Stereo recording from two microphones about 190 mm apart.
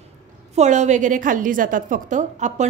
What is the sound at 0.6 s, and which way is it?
A woman's voice, 40° right (ahead or behind).